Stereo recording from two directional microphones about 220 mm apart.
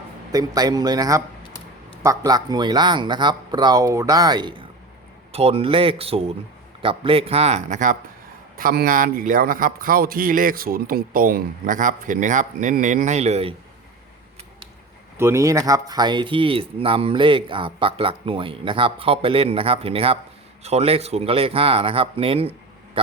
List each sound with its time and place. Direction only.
0.3 s a man's voice: 15° right (ahead or behind)
15.2 s speech: 15° right (ahead or behind)